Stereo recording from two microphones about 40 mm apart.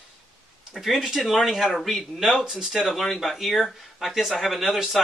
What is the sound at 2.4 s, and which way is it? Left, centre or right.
Speech, centre.